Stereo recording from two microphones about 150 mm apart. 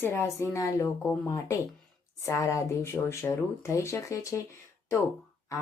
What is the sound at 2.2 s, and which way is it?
Speech, 20° left (ahead or behind).